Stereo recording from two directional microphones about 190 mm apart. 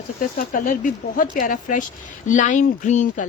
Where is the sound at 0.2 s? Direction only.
45° left (ahead or behind).